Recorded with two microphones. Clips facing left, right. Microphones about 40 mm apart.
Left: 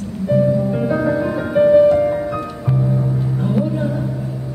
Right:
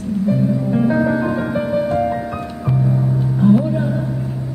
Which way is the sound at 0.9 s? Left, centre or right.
Centre.